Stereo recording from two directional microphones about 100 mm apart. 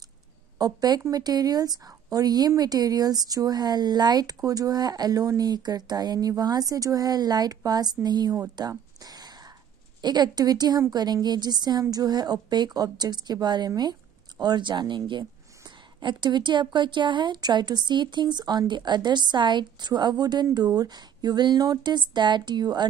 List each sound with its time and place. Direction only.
0.6 s a woman's voice: 40° right (ahead or behind)
8.5 s a sound: 40° right (ahead or behind)
10.0 s speech: 45° right (ahead or behind)